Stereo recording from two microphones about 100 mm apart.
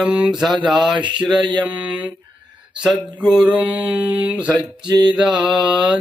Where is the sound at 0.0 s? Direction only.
10° right (ahead or behind).